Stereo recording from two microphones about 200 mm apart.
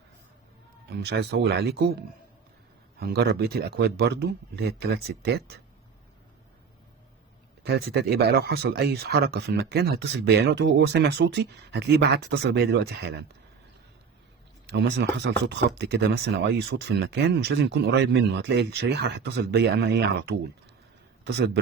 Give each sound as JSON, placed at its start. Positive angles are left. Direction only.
{"t": 0.9, "sound": "speech", "side_deg": -55}
{"t": 7.6, "sound": "speech", "side_deg": -55}
{"t": 14.7, "sound": "speech", "side_deg": -60}